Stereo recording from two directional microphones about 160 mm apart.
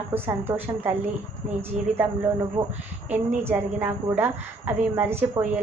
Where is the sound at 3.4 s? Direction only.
15° right (ahead or behind).